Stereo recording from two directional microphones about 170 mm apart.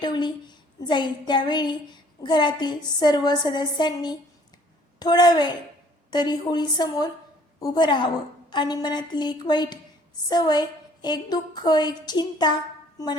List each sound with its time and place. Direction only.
0.0 s a woman's voice: 25° left (ahead or behind)